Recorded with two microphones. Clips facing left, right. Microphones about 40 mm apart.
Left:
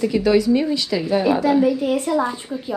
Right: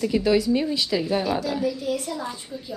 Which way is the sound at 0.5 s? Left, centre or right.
Centre.